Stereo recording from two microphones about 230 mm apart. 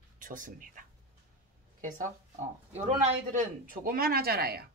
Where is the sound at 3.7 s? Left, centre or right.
Right.